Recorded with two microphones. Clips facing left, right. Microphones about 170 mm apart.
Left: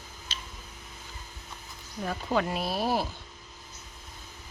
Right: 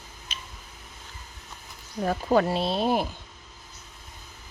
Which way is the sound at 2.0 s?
40° right (ahead or behind).